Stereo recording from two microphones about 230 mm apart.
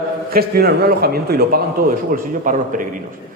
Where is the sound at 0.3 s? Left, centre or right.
Right.